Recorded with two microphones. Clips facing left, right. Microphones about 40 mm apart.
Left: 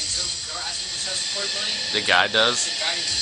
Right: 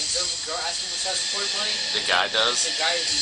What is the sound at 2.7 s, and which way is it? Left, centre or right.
Speech, centre.